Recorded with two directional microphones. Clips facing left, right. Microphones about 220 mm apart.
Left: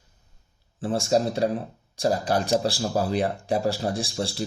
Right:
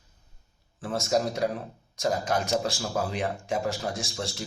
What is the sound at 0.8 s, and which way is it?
Speech, 30° left (ahead or behind).